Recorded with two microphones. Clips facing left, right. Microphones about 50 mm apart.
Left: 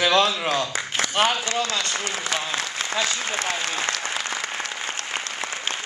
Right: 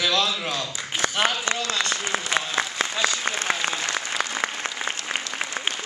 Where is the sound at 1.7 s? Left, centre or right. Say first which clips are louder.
Right 1 dB; right.